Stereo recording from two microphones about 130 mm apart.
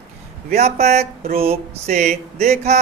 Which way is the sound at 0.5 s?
55° right (ahead or behind).